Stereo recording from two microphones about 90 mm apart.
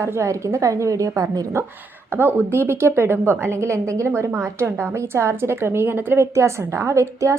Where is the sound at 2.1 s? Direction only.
25° right (ahead or behind).